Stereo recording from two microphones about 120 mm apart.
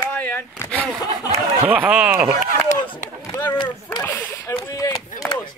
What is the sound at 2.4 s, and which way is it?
Speech, 90° left.